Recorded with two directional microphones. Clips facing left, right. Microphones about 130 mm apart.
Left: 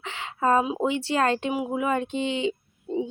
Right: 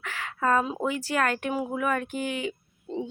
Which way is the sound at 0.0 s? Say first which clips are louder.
Left 2 dB; 25° left (ahead or behind).